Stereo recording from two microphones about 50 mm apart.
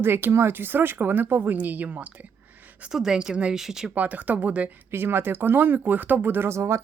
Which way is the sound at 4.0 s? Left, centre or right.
Right.